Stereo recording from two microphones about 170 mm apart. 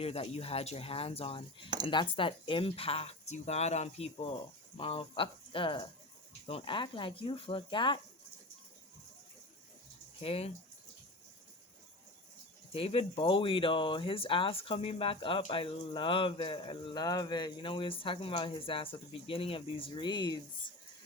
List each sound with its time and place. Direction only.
0.0 s speech: 35° left (ahead or behind)
10.2 s speech: 35° left (ahead or behind)
12.7 s speech: 35° left (ahead or behind)